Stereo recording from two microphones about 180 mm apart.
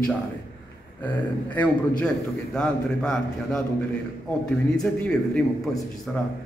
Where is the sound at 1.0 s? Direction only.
10° left (ahead or behind).